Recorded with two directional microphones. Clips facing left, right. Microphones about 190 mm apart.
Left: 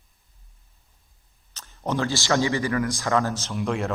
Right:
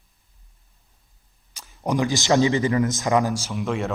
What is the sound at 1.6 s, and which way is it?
Speech, 10° right (ahead or behind).